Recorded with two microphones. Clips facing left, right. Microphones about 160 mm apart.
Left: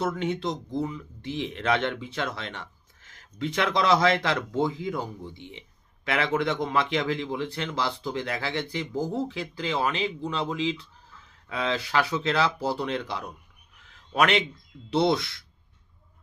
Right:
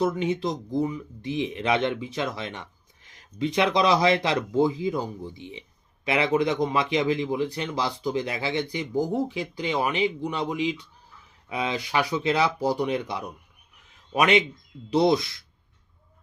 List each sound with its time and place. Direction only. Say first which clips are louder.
0.0 s speech: right 3 dB; 20° right (ahead or behind)
13.9 s a sound: right 2 dB; 15° right (ahead or behind)
14.9 s speech: right 3 dB; 20° right (ahead or behind)